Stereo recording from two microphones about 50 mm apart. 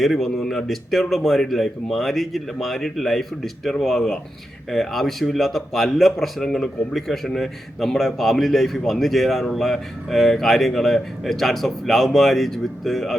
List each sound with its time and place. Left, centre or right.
0.0 s a man's voice: centre